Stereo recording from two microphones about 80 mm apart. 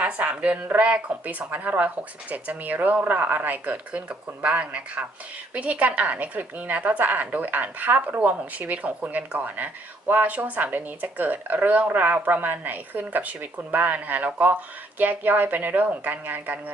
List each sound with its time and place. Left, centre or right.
0.0 s speech: centre